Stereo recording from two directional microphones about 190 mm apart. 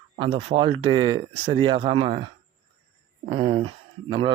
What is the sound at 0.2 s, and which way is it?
Speech, 30° right (ahead or behind).